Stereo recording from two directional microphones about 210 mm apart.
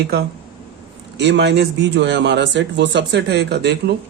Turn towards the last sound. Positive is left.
turn(degrees=-55)  # may be behind; listen again after turning